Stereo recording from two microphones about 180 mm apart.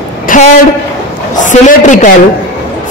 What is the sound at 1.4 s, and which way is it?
Speech, 45° left (ahead or behind).